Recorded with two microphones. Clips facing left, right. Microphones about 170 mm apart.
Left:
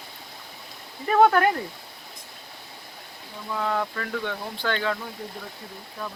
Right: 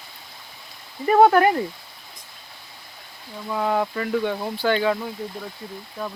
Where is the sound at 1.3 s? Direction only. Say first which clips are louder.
Right 4 dB; 15° right (ahead or behind).